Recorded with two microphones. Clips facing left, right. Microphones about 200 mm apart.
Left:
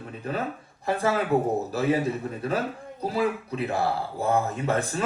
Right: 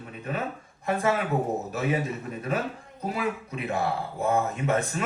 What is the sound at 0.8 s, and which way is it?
Speech, 30° left (ahead or behind).